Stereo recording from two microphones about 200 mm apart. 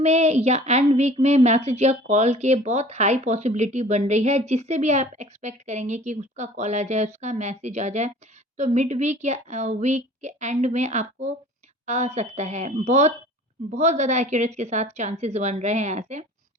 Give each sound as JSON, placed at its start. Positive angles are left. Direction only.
{"t": 0.0, "sound": "a woman's voice", "side_deg": -35}